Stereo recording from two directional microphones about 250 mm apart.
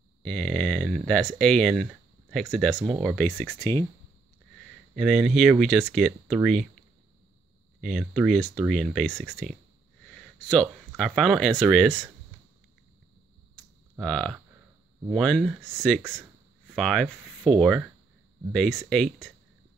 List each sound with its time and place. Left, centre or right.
0.2 s speech: centre
4.9 s speech: centre
7.8 s speech: centre
13.9 s speech: centre
16.7 s speech: centre